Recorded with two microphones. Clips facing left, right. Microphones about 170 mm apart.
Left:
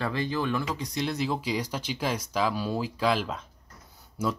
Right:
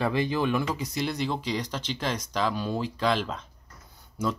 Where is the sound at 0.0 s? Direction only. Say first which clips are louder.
Right 3 dB; 15° right (ahead or behind).